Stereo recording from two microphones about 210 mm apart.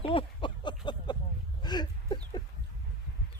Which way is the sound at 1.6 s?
20° left (ahead or behind).